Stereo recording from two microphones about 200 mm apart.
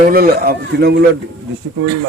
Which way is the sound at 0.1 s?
50° right (ahead or behind).